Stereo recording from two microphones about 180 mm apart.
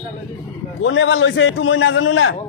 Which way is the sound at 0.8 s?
90° left.